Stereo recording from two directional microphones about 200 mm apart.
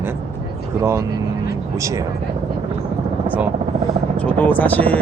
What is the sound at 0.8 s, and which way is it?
Speech, 15° right (ahead or behind).